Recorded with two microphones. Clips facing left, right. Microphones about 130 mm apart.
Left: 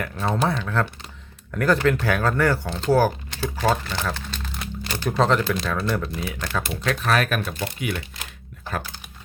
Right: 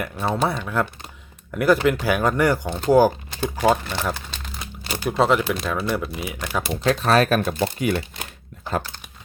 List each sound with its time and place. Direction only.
0.0 s speech: 10° right (ahead or behind)
6.8 s speech: 30° right (ahead or behind)